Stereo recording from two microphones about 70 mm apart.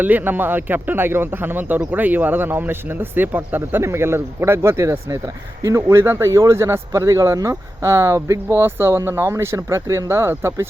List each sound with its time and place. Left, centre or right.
0.0 s a man's voice: right